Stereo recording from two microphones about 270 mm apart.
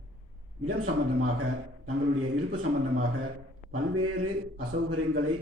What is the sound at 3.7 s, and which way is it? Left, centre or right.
Speech, right.